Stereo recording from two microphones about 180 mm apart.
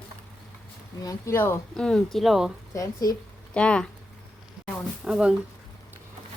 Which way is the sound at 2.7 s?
20° left (ahead or behind).